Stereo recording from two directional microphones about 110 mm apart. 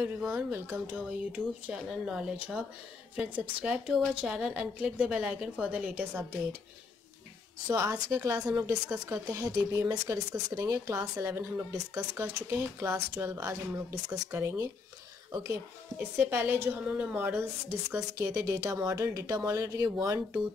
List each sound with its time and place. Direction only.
0.3 s a woman's voice: 20° right (ahead or behind)
7.6 s speech: 30° right (ahead or behind)
16.2 s speech: 20° right (ahead or behind)
17.9 s speech: 30° right (ahead or behind)